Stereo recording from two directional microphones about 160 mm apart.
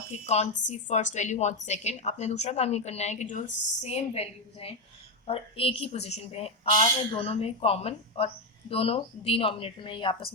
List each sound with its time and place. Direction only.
0.1 s a woman's voice: 45° left (ahead or behind)